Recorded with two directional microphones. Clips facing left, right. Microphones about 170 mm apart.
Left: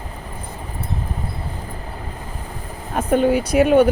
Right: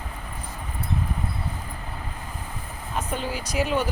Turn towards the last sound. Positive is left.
turn(degrees=55)  # may be behind; listen again after turning